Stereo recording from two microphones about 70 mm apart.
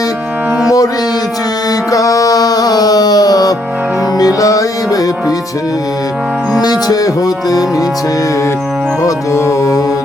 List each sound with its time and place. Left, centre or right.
1.9 s music: left
6.6 s music: left
9.0 s music: left